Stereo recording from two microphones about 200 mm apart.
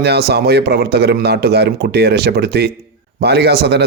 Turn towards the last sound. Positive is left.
turn(degrees=-55)  # may be behind; listen again after turning